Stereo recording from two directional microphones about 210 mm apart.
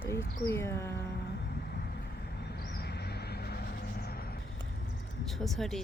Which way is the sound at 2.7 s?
50° left (ahead or behind).